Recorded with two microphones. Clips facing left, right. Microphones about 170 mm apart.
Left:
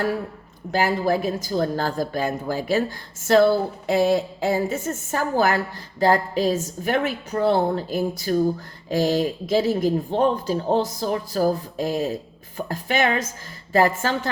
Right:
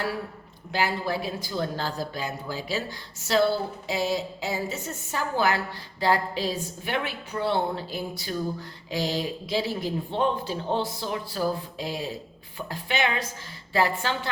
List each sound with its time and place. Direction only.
0.7 s speech: 45° left (ahead or behind)